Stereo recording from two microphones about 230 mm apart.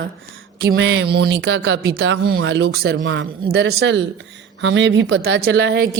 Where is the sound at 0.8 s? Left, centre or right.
Right.